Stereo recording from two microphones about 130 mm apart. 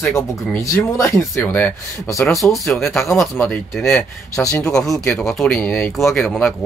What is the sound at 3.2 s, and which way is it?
Speech, 15° left (ahead or behind).